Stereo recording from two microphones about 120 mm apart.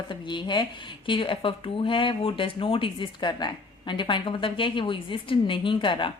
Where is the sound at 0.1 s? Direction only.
40° left (ahead or behind).